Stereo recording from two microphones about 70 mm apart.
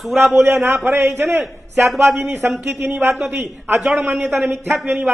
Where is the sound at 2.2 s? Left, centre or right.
Right.